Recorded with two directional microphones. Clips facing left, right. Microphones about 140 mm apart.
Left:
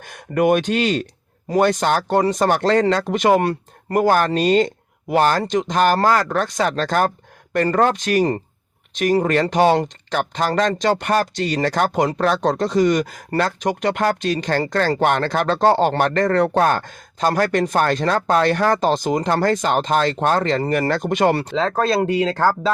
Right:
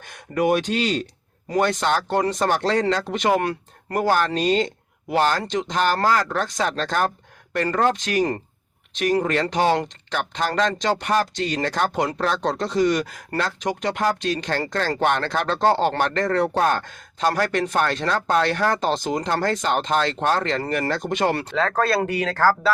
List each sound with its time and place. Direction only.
0.0 s speech: 60° left (ahead or behind)
1.5 s speech: 45° left (ahead or behind)
16.3 s speech: 60° left (ahead or behind)
21.5 s speech: 15° left (ahead or behind)